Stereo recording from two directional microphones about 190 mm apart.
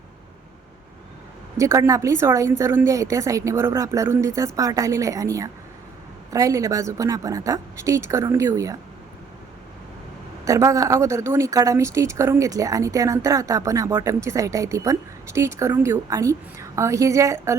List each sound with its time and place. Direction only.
1.5 s speech: 15° right (ahead or behind)
10.4 s speech: 15° right (ahead or behind)